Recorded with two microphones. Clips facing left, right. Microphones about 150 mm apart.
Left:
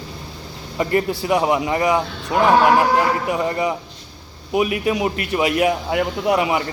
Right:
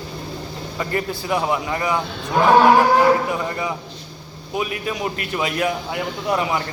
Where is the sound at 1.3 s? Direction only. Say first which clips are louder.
Left 3 dB; 15° left (ahead or behind).